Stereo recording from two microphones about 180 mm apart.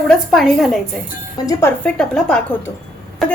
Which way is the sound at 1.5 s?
15° left (ahead or behind).